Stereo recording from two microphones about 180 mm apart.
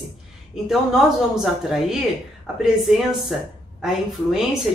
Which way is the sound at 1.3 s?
5° right (ahead or behind).